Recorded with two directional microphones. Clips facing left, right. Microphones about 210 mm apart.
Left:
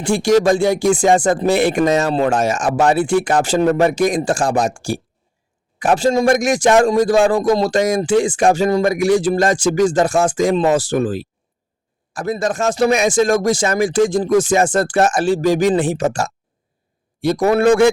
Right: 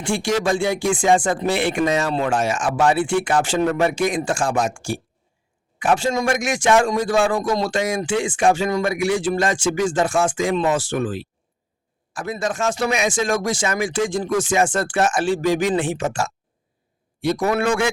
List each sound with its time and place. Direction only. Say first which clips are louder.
0.0 s a man's voice: left 7 dB; 40° left (ahead or behind)